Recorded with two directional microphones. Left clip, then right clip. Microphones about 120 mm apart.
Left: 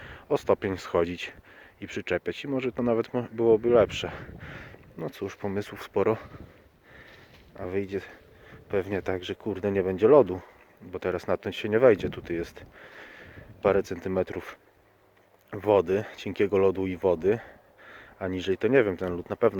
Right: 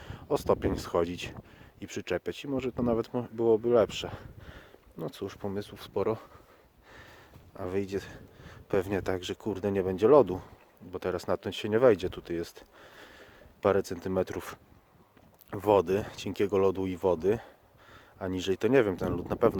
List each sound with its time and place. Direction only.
0.2 s speech: 20° right (ahead or behind)
5.9 s speech: 5° left (ahead or behind)
7.5 s speech: 25° right (ahead or behind)